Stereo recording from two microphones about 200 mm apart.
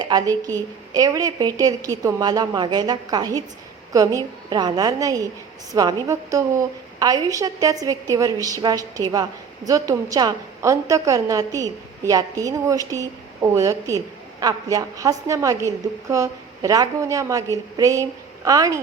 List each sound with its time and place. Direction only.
0.0 s a woman's voice: 20° right (ahead or behind)